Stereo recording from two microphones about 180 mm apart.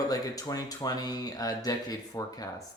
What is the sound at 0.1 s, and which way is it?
Speech, 20° left (ahead or behind).